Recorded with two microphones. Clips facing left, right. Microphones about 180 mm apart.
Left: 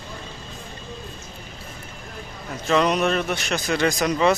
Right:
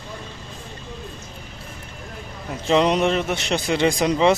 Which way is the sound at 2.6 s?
25° right (ahead or behind).